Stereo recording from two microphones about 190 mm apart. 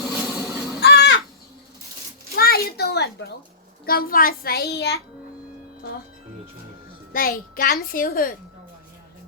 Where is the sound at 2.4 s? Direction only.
55° left (ahead or behind).